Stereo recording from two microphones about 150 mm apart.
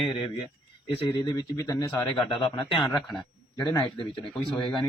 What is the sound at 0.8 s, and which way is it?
Speech, 35° left (ahead or behind).